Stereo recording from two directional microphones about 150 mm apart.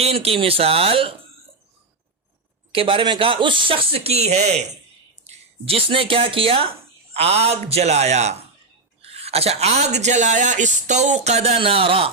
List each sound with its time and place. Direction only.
0.0 s speech: 40° right (ahead or behind)
2.7 s speech: 35° right (ahead or behind)